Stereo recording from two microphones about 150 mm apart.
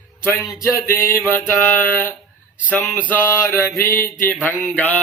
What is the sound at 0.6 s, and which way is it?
Mantra, 15° left (ahead or behind).